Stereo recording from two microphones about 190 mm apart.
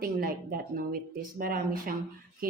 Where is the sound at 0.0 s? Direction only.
50° right (ahead or behind).